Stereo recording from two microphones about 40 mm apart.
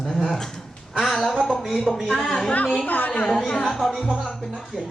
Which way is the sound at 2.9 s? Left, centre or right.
Left.